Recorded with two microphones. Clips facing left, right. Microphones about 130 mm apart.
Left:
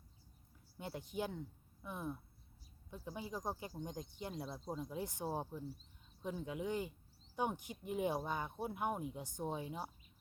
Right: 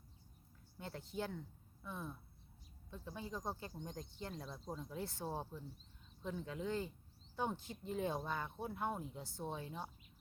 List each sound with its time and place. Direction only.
0.8 s speech: 15° left (ahead or behind)